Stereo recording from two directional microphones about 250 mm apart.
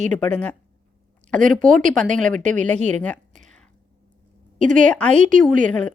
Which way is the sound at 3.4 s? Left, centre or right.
Centre.